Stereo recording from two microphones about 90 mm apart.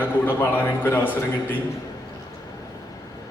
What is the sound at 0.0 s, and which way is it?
A man's voice, 20° left (ahead or behind).